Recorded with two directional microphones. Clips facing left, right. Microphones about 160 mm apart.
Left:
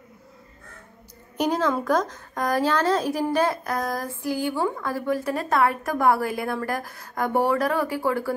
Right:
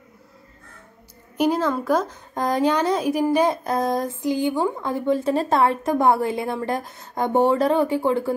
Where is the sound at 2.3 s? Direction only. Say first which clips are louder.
Right 2 dB; 25° right (ahead or behind).